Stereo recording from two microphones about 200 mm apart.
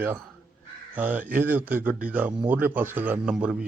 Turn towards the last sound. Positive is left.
turn(degrees=-5)  # may be behind; listen again after turning